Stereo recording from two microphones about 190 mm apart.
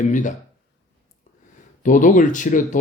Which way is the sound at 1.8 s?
40° left (ahead or behind).